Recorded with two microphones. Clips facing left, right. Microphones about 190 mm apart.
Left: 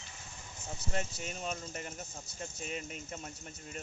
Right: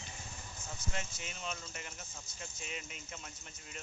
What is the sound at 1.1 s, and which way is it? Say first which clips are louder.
Speech: left 5 dB; 40° left (ahead or behind).